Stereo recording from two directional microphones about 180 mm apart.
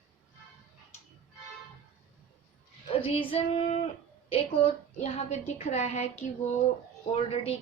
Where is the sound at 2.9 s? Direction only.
30° left (ahead or behind).